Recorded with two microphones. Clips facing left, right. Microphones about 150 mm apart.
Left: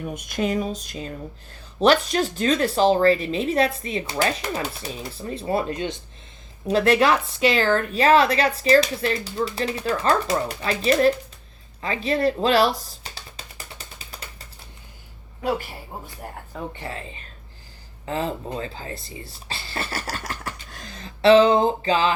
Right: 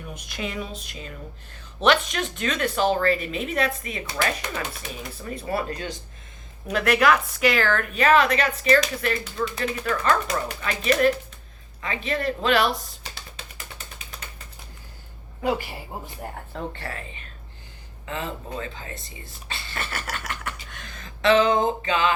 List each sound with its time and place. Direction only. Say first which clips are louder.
0.0 s speech: left 7 dB; 45° left (ahead or behind)
13.1 s mechanisms: left 1 dB; 35° left (ahead or behind)
15.4 s a woman's voice: even; centre (ahead or behind)
16.5 s speech: left 1 dB; 15° left (ahead or behind)
16.9 s speech: left 2 dB; 35° left (ahead or behind)